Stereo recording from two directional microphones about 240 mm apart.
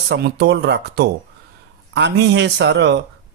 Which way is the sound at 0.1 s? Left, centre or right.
Right.